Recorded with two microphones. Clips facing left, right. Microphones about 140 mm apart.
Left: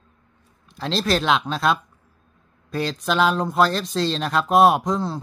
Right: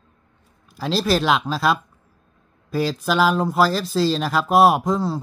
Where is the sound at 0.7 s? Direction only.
5° right (ahead or behind).